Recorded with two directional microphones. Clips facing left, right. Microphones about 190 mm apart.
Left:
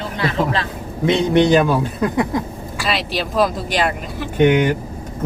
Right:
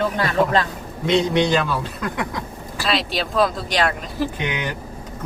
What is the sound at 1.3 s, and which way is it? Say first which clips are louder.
Speech: left 6 dB; 50° left (ahead or behind).